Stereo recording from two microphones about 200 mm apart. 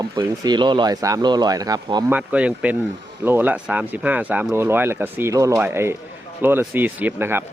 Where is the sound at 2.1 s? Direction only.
5° right (ahead or behind).